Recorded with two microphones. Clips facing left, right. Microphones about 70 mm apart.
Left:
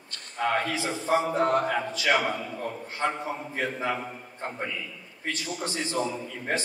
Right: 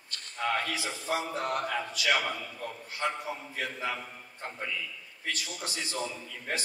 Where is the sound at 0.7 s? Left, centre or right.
Left.